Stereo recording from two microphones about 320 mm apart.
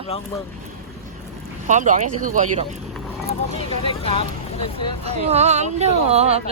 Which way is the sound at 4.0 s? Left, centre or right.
Centre.